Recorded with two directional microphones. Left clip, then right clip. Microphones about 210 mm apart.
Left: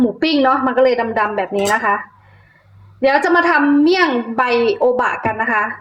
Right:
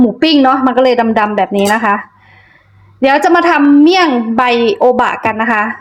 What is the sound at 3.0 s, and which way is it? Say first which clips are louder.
A woman's voice: right 4 dB; 35° right (ahead or behind).